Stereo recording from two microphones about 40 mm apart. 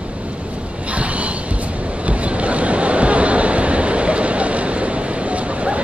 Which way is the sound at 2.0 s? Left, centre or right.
Right.